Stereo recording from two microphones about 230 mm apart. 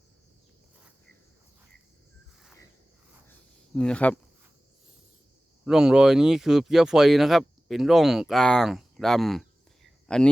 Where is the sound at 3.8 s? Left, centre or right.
Centre.